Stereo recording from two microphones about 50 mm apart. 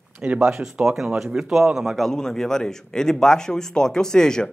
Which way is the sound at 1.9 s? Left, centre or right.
Centre.